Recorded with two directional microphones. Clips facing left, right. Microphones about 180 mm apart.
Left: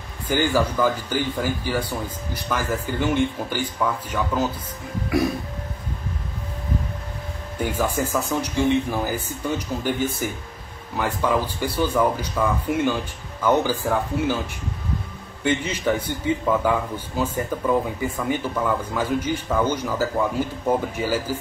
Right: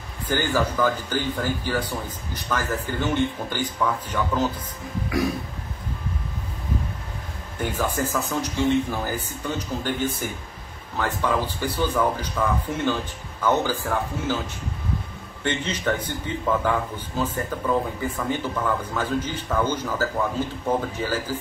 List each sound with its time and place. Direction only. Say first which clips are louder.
0.3 s speech: left 3 dB; 10° left (ahead or behind)
7.8 s speech: left 2 dB; 10° left (ahead or behind)
15.4 s speech: left 3 dB; 10° left (ahead or behind)